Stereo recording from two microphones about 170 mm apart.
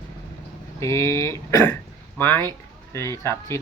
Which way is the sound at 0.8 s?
15° left (ahead or behind).